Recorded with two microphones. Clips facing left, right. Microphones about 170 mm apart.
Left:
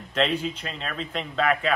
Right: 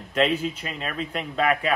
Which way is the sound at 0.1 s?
5° right (ahead or behind).